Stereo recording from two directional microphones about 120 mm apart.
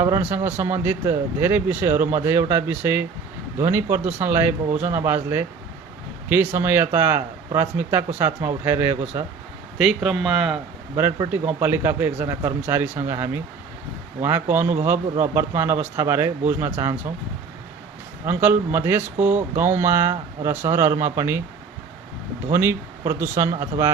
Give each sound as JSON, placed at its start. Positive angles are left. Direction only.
{"t": 0.0, "sound": "speech", "side_deg": -15}
{"t": 9.7, "sound": "speech", "side_deg": -5}
{"t": 11.6, "sound": "speech", "side_deg": -20}
{"t": 18.3, "sound": "speech", "side_deg": -15}
{"t": 22.5, "sound": "speech", "side_deg": -20}